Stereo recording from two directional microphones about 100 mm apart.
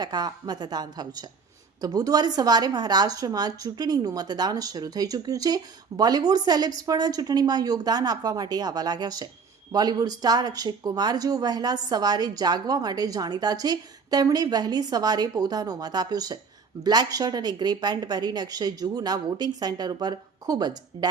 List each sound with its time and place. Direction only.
0.0 s a woman's voice: 40° right (ahead or behind)